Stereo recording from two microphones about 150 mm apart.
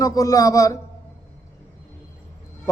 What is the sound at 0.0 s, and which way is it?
Speech, 25° left (ahead or behind).